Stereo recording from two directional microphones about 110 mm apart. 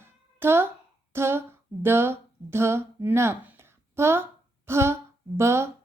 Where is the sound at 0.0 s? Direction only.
20° right (ahead or behind).